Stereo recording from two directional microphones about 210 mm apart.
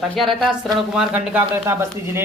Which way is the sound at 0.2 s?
Centre (ahead or behind).